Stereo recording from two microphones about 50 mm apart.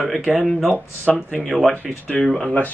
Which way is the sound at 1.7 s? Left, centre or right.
Centre.